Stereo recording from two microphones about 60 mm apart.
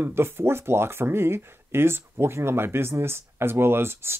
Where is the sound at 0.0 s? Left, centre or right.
Right.